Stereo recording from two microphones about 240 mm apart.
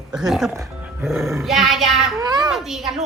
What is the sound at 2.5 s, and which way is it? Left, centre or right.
Speech, centre.